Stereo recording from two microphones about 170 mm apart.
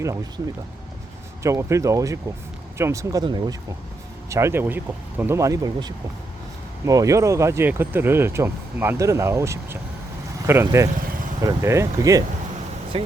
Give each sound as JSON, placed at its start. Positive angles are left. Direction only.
{"t": 1.4, "sound": "speech", "side_deg": -15}